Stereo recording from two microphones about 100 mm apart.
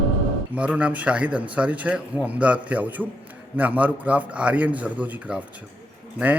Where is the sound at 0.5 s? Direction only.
10° right (ahead or behind).